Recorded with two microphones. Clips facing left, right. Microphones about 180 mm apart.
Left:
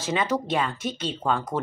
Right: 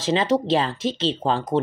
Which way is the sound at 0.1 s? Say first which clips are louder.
Right 5 dB; 30° right (ahead or behind).